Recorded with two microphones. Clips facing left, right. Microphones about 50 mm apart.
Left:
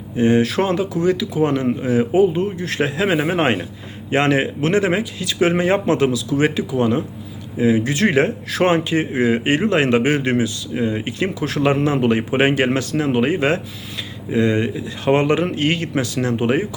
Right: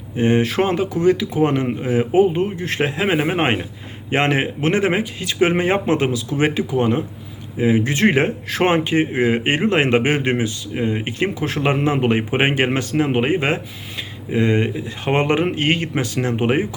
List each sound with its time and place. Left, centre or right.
0.2 s speech: right